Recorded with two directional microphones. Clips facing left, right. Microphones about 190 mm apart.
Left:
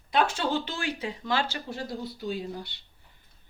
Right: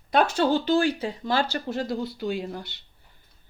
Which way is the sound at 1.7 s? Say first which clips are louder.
Right 7 dB; 75° right (ahead or behind).